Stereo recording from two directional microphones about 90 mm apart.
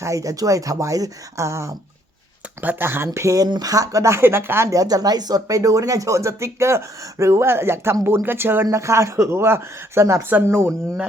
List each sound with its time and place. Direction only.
0.0 s speech: 35° right (ahead or behind)
2.6 s speech: 20° right (ahead or behind)
3.2 s speech: 40° right (ahead or behind)